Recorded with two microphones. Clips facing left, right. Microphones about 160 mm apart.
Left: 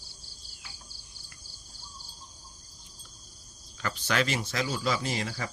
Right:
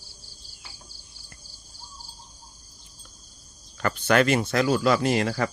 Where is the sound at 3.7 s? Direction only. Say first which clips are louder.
Right 8 dB; 55° right (ahead or behind).